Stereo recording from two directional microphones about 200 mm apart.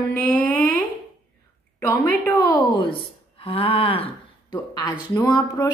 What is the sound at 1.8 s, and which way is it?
A woman's voice, 15° left (ahead or behind).